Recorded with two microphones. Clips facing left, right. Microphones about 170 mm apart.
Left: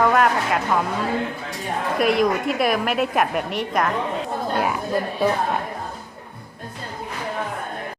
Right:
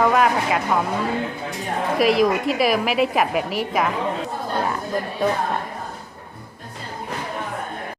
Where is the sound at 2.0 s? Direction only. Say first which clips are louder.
Right 2 dB; centre (ahead or behind).